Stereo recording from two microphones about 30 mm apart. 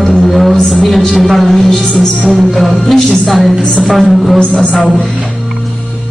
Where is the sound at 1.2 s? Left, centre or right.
Centre.